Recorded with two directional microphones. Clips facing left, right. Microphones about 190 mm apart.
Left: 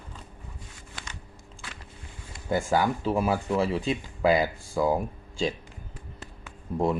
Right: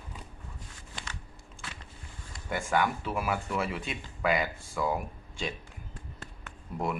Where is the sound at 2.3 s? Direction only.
30° left (ahead or behind).